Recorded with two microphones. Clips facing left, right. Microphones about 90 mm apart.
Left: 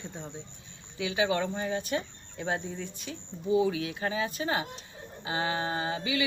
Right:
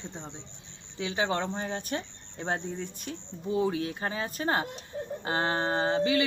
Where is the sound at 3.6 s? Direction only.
40° right (ahead or behind).